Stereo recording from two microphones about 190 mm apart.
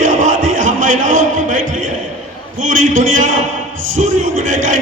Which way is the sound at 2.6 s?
40° right (ahead or behind).